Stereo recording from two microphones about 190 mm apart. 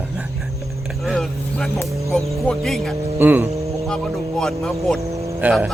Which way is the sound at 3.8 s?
Centre (ahead or behind).